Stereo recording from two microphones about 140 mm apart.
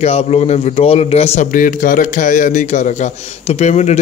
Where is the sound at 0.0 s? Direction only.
50° left (ahead or behind).